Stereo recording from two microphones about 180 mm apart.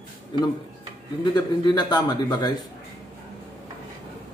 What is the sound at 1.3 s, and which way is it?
A man's voice, 25° left (ahead or behind).